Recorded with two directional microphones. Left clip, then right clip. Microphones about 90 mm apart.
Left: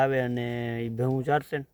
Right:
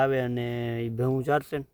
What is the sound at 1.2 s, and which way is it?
Speech, 30° right (ahead or behind).